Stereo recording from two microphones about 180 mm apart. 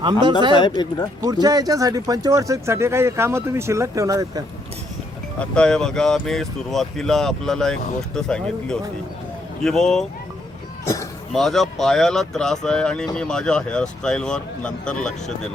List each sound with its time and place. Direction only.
0.0 s speech: 25° right (ahead or behind)
0.8 s speech: 20° left (ahead or behind)
1.2 s speech: 20° right (ahead or behind)
5.4 s speech: 5° left (ahead or behind)
11.3 s speech: centre (ahead or behind)